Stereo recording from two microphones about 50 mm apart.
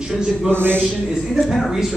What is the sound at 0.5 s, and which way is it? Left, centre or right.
Speech, right.